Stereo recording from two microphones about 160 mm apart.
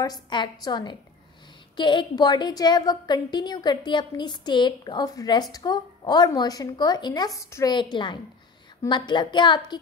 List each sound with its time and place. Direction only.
0.0 s a woman's voice: 25° left (ahead or behind)